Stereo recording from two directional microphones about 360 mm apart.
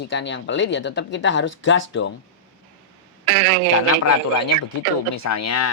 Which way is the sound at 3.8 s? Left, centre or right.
Left.